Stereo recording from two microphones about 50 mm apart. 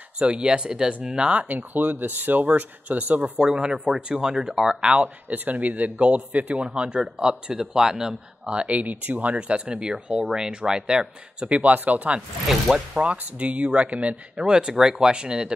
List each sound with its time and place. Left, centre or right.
0.2 s speech: centre
1.5 s speech: right
3.3 s speech: centre
8.5 s speech: right
12.4 s speech: centre
12.9 s speech: right